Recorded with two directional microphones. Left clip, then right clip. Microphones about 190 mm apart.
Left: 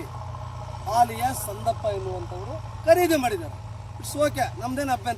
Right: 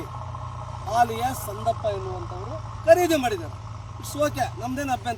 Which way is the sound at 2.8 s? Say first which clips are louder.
Right 1 dB; 15° right (ahead or behind).